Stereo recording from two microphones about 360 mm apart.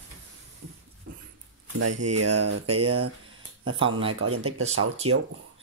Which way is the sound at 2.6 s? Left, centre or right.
Centre.